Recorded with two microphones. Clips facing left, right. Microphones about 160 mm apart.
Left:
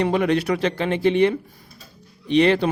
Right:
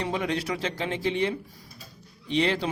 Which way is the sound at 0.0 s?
65° left (ahead or behind).